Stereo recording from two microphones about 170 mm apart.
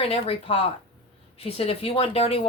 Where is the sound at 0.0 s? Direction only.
35° left (ahead or behind).